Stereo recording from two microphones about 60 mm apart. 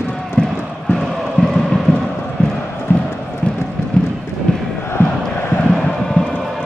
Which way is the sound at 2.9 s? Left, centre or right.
Left.